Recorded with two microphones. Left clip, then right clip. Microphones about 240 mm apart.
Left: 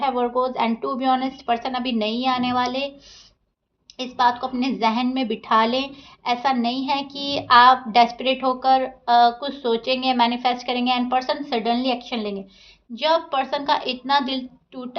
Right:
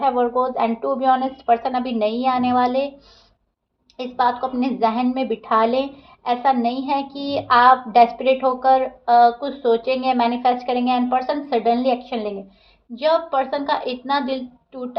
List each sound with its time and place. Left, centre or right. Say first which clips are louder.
0.0 s a woman's voice: right 3 dB; left
3.9 s a woman's voice: even; left